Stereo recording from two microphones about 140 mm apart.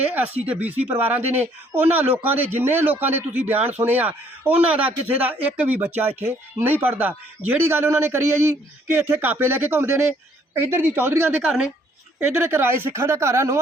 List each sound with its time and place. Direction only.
0.1 s speech: 10° right (ahead or behind)